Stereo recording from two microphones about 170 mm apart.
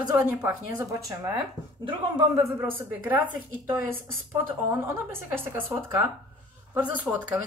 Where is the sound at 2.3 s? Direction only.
15° right (ahead or behind).